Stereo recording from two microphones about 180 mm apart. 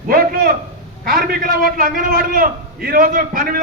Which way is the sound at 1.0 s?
55° right (ahead or behind).